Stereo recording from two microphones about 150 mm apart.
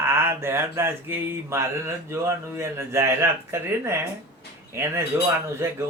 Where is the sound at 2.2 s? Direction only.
20° right (ahead or behind).